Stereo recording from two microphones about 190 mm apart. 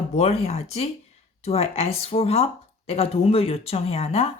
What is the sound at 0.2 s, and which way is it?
Speech, 35° left (ahead or behind).